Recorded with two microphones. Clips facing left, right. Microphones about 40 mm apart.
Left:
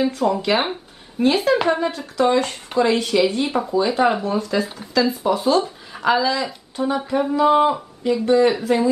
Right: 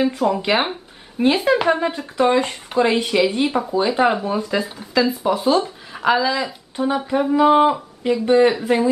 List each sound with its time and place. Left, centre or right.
0.0 s speech: centre
4.6 s speech: centre; by 8.8 s right